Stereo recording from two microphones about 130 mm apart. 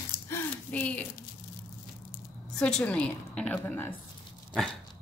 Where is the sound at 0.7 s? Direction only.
10° left (ahead or behind).